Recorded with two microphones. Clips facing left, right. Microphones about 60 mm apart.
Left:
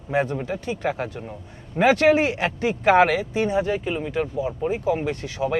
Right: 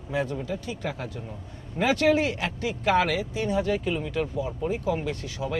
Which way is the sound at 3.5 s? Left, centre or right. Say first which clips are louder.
Left 2 dB; left.